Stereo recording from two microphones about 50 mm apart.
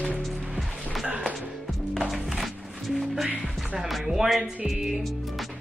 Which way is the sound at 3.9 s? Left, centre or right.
Centre.